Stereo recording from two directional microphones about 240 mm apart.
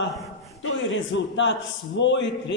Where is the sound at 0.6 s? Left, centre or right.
Left.